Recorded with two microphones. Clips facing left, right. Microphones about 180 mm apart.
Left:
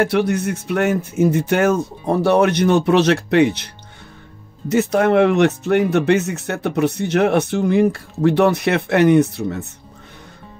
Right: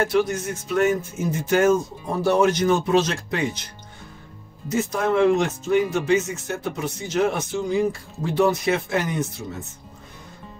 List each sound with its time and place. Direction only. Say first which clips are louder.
0.0 s speech: left 4 dB; 65° left (ahead or behind)